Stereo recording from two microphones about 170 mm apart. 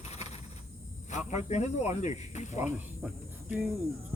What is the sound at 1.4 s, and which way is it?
Speech, 40° left (ahead or behind).